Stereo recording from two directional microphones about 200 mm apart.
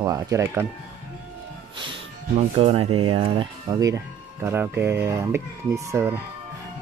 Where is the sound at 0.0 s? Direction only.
15° right (ahead or behind).